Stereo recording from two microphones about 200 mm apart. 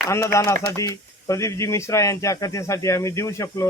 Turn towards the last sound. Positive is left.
turn(degrees=15)  # may be behind; listen again after turning